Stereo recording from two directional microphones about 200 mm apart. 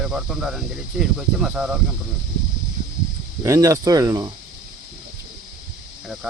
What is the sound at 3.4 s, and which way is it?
Speech, 15° right (ahead or behind).